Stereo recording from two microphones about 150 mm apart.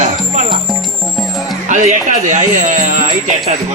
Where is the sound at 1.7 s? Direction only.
55° right (ahead or behind).